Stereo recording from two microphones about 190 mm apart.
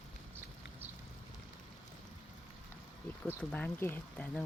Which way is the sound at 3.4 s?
5° left (ahead or behind).